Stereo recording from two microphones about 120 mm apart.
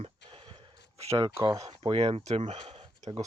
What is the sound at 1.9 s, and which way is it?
Speech, 55° right (ahead or behind).